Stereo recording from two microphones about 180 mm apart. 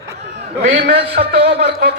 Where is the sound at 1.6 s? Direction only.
65° right (ahead or behind).